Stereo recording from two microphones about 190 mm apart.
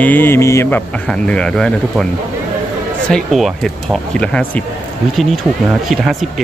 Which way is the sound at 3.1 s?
Centre (ahead or behind).